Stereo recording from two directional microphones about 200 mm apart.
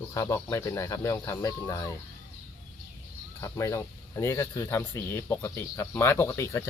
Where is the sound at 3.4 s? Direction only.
15° left (ahead or behind).